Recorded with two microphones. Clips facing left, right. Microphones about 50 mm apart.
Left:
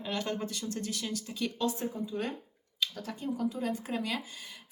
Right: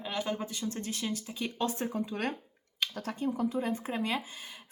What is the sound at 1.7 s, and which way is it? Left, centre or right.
Speech, right.